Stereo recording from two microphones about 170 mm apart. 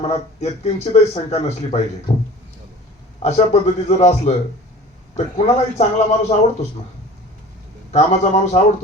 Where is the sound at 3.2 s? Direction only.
40° left (ahead or behind).